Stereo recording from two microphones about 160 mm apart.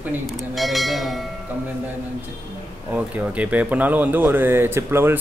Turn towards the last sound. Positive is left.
turn(degrees=-15)  # may be behind; listen again after turning